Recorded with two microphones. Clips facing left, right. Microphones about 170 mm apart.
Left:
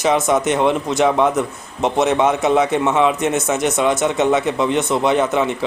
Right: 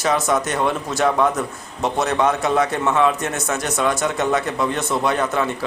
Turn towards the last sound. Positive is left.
turn(degrees=20)  # may be behind; listen again after turning